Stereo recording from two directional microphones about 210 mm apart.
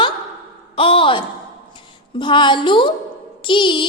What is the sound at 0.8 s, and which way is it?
A woman's voice, 25° left (ahead or behind).